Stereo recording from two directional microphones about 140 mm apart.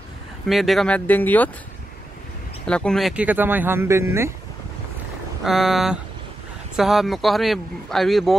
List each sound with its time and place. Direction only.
0.5 s speech: centre (ahead or behind)
2.6 s speech: 5° left (ahead or behind)
3.3 s speech: 15° right (ahead or behind)
5.4 s speech: centre (ahead or behind)